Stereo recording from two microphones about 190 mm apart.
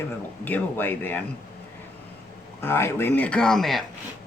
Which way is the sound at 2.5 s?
15° left (ahead or behind).